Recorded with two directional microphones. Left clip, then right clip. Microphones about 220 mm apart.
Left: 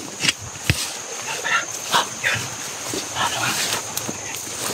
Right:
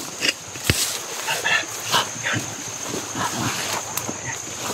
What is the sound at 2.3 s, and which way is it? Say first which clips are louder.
Dog: left 3 dB; 50° left (ahead or behind).